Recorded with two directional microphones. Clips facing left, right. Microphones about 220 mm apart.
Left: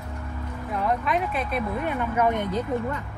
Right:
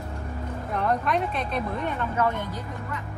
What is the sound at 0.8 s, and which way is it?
Speech, 5° left (ahead or behind).